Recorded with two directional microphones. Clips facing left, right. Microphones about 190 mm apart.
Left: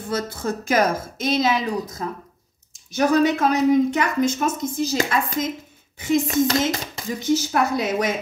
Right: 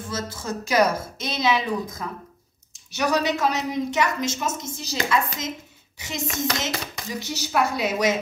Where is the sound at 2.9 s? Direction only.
50° left (ahead or behind).